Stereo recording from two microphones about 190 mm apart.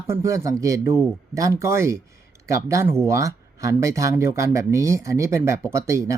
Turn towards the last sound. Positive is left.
turn(degrees=-15)  # may be behind; listen again after turning